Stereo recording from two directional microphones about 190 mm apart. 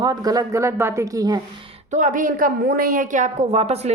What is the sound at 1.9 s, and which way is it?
A woman's voice, 40° right (ahead or behind).